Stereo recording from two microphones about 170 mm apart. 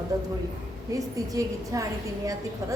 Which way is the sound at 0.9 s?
20° right (ahead or behind).